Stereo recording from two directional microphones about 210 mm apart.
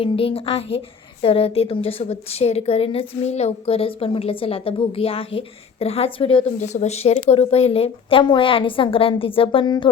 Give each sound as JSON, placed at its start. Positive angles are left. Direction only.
{"t": 0.0, "sound": "a woman's voice", "side_deg": 25}